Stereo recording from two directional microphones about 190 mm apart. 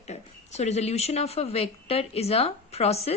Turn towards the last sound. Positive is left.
turn(degrees=30)  # may be behind; listen again after turning